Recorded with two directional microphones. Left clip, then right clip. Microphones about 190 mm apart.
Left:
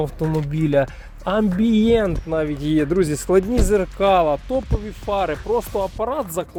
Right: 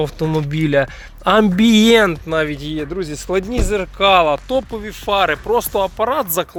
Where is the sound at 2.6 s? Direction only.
55° left (ahead or behind).